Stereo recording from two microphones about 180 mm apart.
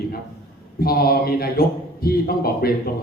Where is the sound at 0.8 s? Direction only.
55° left (ahead or behind).